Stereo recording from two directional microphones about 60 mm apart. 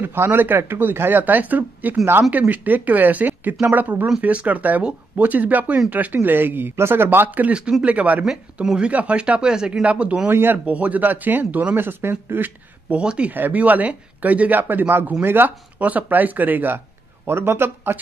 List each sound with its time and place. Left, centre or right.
0.0 s speech: right
7.2 s speech: right
10.3 s speech: right
10.6 s speech: right
12.9 s speech: centre
13.3 s speech: right